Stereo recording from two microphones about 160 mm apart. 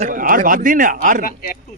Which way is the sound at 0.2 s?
55° right (ahead or behind).